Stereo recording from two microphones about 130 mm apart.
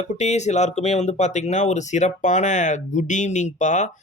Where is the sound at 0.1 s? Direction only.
60° left (ahead or behind).